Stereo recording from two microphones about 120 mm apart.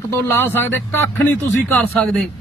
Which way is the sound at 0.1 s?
20° left (ahead or behind).